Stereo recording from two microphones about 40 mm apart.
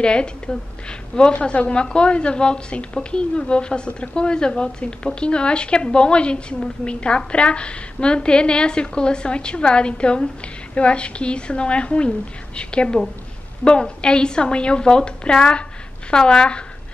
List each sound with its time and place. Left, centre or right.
0.0 s a woman's voice: left